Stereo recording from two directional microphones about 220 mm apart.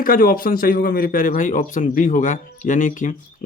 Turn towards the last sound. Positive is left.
turn(degrees=35)  # may be behind; listen again after turning